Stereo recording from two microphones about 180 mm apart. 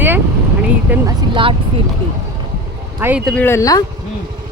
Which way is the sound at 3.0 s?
10° right (ahead or behind).